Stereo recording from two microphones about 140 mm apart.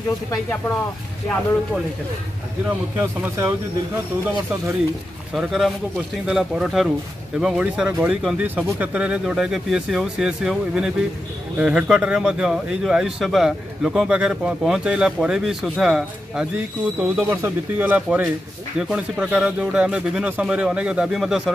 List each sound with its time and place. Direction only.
3.0 s speech: 15° right (ahead or behind)
5.3 s speech: centre (ahead or behind)